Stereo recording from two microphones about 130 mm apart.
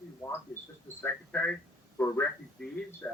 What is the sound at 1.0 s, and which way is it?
Speech, 10° left (ahead or behind).